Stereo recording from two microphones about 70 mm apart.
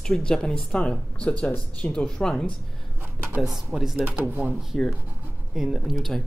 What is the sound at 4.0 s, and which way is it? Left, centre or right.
Speech, right.